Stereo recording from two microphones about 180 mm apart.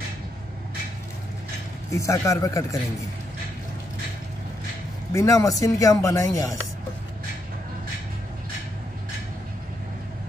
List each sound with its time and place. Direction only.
1.9 s speech: 15° left (ahead or behind)
5.1 s speech: 15° left (ahead or behind)